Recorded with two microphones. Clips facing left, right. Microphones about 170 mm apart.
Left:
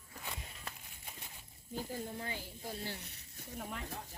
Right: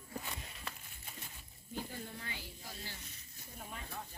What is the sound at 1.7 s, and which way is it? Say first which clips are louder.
Speech: left 3 dB; 40° left (ahead or behind).